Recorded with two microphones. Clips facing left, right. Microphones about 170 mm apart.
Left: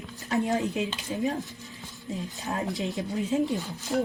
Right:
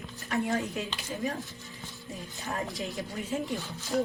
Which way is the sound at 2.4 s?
20° left (ahead or behind).